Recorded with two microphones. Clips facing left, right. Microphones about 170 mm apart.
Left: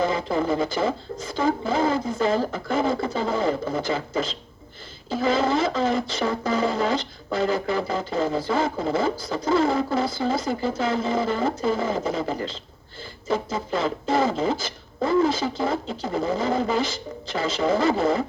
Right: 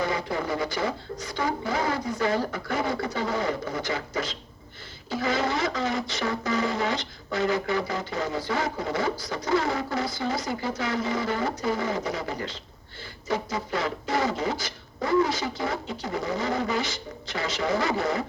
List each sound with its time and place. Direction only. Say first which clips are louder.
0.0 s speech: left 5 dB; 25° left (ahead or behind)